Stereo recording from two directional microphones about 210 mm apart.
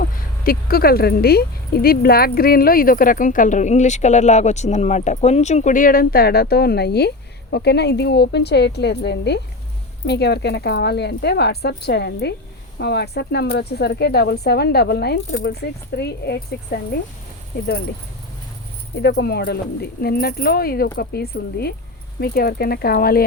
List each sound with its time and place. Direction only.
0.0 s speech: 45° left (ahead or behind)
18.9 s speech: 50° left (ahead or behind)